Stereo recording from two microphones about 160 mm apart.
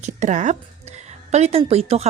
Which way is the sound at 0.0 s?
50° right (ahead or behind).